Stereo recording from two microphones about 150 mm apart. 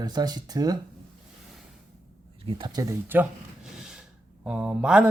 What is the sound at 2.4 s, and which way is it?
Speech, 35° right (ahead or behind).